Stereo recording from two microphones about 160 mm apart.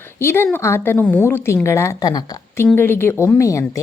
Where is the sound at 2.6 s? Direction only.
15° left (ahead or behind).